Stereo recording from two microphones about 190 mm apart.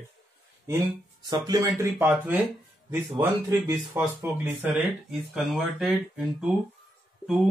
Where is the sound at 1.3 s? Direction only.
20° right (ahead or behind).